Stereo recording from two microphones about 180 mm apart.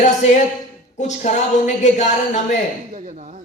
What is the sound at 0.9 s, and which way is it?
Speech, 40° left (ahead or behind).